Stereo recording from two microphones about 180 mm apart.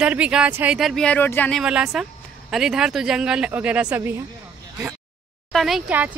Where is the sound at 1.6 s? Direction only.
5° right (ahead or behind).